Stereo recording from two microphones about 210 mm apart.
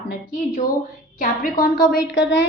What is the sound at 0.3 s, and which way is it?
Speech, 40° left (ahead or behind).